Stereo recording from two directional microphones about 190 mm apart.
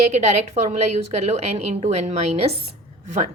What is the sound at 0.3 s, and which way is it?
A woman's voice, 35° right (ahead or behind).